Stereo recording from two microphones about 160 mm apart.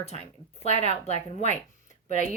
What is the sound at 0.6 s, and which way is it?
Speech, 40° left (ahead or behind).